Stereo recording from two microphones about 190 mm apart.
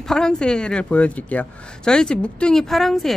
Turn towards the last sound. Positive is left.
turn(degrees=0)  # may be behind; listen again after turning